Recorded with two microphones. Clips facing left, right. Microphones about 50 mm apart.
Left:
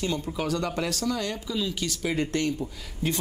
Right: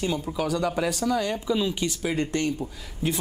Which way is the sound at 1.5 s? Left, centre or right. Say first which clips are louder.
Right 6 dB; right.